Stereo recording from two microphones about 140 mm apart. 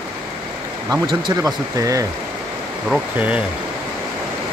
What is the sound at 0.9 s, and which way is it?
Speech, 25° right (ahead or behind).